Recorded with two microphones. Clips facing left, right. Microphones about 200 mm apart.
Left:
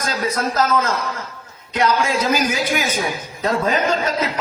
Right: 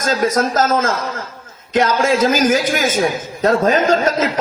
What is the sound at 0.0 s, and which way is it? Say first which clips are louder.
A man's voice: right 6 dB; 45° right (ahead or behind).